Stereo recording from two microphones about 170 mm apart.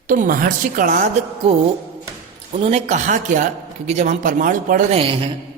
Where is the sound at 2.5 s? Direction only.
40° right (ahead or behind).